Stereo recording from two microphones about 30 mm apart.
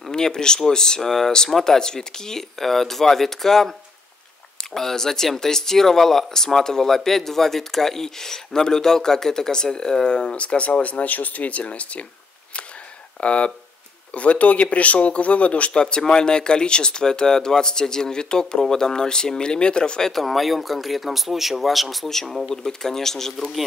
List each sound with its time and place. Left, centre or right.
0.1 s speech: left
1.0 s speech: centre
1.6 s speech: left
4.7 s speech: centre; by 10.4 s left
10.4 s speech: left
13.2 s speech: left
14.1 s speech: left
15.7 s speech: left
20.1 s speech: centre
22.6 s speech: centre